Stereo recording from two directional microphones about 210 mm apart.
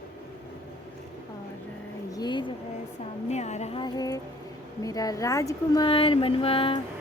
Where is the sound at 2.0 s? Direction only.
20° left (ahead or behind).